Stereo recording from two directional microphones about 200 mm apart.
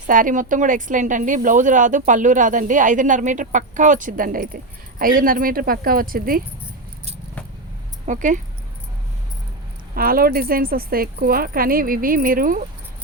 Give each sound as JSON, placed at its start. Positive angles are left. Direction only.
{"t": 0.1, "sound": "a woman's voice", "side_deg": -40}
{"t": 8.0, "sound": "speech", "side_deg": -40}
{"t": 9.9, "sound": "speech", "side_deg": -45}